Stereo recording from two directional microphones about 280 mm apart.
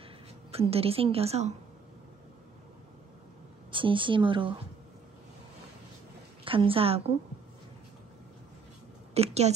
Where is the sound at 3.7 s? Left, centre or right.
Centre.